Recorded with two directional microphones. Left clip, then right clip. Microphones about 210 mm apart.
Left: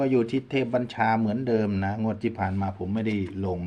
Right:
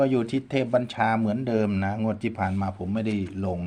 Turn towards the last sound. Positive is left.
turn(degrees=-20)  # may be behind; listen again after turning